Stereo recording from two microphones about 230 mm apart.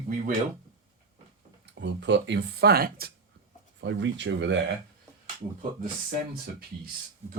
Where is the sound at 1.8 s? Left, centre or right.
Right.